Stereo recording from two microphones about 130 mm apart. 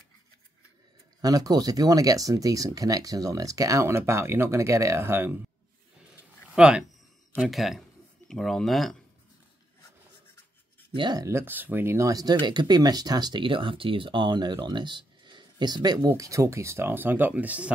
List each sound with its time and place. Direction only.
1.2 s speech: 30° right (ahead or behind)
6.5 s speech: 5° right (ahead or behind)
11.0 s speech: 35° right (ahead or behind)
11.2 s speech: 20° right (ahead or behind)